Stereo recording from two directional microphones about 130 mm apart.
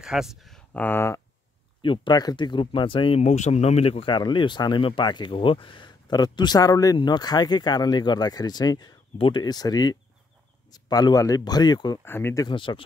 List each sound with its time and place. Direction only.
0.0 s speech: 5° right (ahead or behind)
0.8 s speech: 20° left (ahead or behind)
1.8 s speech: 40° left (ahead or behind)
12.0 s speech: 15° left (ahead or behind)
12.4 s speech: 40° left (ahead or behind)